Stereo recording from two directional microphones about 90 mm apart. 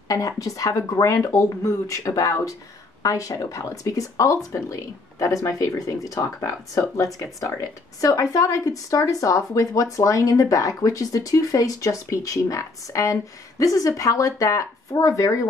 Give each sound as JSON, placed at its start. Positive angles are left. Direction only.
{"t": 0.1, "sound": "speech", "side_deg": 40}